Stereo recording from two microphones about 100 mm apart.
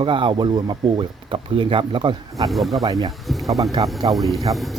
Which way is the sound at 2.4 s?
Centre (ahead or behind).